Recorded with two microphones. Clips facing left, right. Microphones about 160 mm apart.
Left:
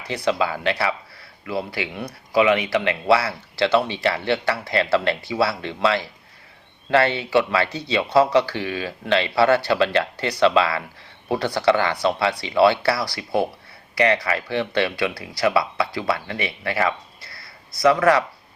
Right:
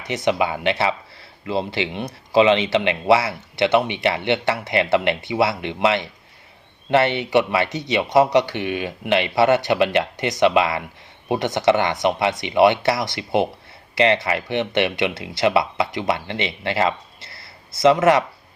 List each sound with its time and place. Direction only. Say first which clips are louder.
0.1 s speech: right 2 dB; 20° right (ahead or behind)